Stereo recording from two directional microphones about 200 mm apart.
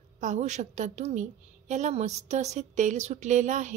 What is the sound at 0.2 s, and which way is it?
A woman's voice, 35° right (ahead or behind).